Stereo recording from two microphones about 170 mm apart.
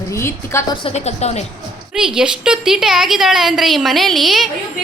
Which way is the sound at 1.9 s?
5° right (ahead or behind).